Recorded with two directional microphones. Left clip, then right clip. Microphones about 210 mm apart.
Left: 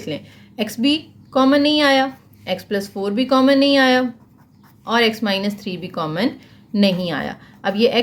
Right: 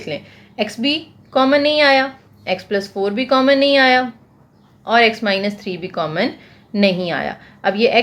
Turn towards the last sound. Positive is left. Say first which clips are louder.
# right 2 dB
turn(degrees=20)  # may be behind; listen again after turning